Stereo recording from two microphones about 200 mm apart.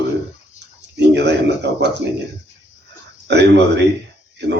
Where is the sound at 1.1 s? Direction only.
60° right (ahead or behind).